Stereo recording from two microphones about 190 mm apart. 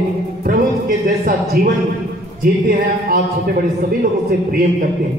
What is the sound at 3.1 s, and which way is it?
A man's voice, 50° right (ahead or behind).